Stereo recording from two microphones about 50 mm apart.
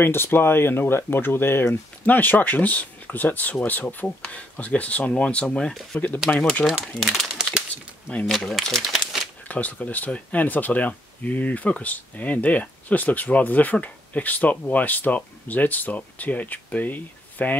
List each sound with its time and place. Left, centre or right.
0.0 s speech: left
2.0 s speech: left
6.6 s speech: centre
7.0 s speech: centre
8.3 s speech: centre
9.5 s speech: left